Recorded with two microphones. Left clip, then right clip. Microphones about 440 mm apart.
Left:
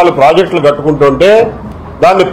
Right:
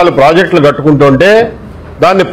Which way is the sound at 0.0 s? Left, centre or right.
Right.